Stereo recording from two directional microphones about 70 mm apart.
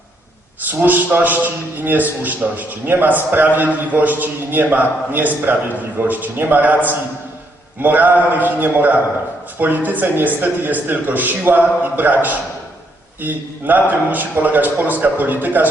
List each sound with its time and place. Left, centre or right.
0.7 s a man's voice: right
7.8 s a man's voice: right